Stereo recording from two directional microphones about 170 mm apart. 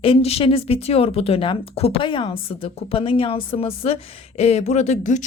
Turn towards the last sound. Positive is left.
turn(degrees=45)  # may be behind; listen again after turning